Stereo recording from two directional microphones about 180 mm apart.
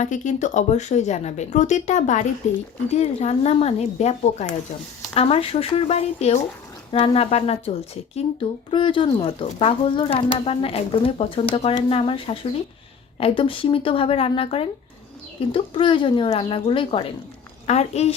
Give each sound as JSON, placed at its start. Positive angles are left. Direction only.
{"t": 0.0, "sound": "speech", "side_deg": 40}